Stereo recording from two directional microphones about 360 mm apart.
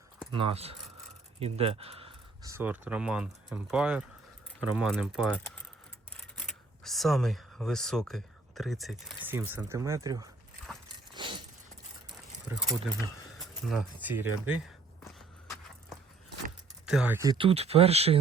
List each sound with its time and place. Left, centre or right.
0.3 s speech: centre
11.1 s keys jangling: centre
12.5 s speech: centre
16.8 s speech: centre